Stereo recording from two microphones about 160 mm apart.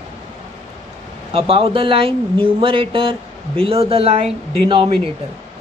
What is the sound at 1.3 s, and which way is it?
Speech, 35° right (ahead or behind).